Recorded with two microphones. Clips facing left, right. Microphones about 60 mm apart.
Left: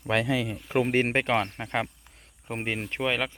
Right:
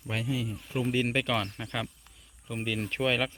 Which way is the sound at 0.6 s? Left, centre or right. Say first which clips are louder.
Left 5 dB; left.